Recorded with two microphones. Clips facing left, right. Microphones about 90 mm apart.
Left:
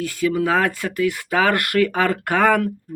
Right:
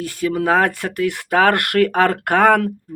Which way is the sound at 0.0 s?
35° right (ahead or behind).